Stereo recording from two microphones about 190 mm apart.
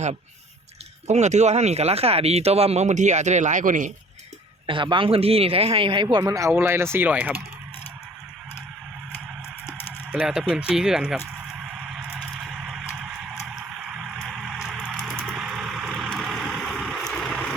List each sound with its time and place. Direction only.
1.0 s speech: 35° right (ahead or behind)
4.6 s a man's voice: 25° right (ahead or behind); by 7.4 s 10° right (ahead or behind)
10.1 s speech: 5° right (ahead or behind)
11.9 s vehicle: 5° right (ahead or behind)